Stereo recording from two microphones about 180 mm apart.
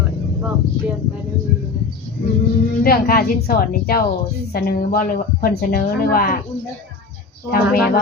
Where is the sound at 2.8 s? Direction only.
55° left (ahead or behind).